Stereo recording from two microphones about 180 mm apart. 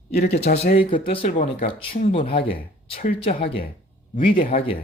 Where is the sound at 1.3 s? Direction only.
45° left (ahead or behind).